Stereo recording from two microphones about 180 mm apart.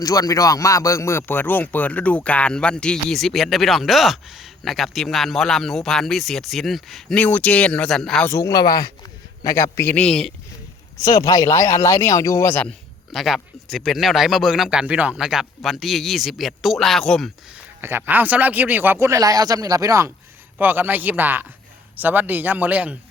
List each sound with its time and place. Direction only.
0.0 s speech: 20° left (ahead or behind); by 8.3 s centre (ahead or behind)
8.3 s speech: 15° left (ahead or behind)
11.0 s speech: 20° left (ahead or behind)
13.1 s speech: centre (ahead or behind)
17.7 s speech: 10° right (ahead or behind)